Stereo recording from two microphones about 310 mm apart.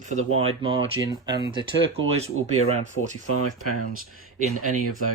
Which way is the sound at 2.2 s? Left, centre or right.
Centre.